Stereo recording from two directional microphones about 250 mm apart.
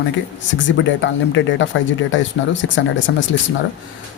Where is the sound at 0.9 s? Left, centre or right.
Left.